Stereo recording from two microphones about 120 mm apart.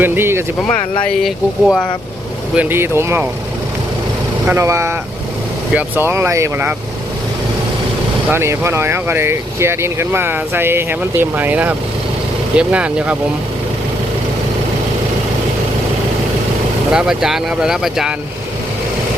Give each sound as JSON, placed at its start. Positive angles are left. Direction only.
{"t": 0.0, "sound": "speech", "side_deg": -20}
{"t": 1.2, "sound": "speech", "side_deg": 0}
{"t": 2.6, "sound": "speech", "side_deg": -20}
{"t": 4.4, "sound": "speech", "side_deg": -20}
{"t": 8.3, "sound": "speech", "side_deg": -20}
{"t": 16.9, "sound": "speech", "side_deg": -5}